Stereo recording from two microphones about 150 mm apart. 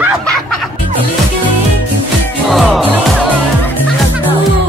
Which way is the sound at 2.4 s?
Centre (ahead or behind).